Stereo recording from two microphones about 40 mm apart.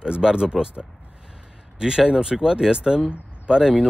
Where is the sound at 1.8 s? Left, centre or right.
Centre.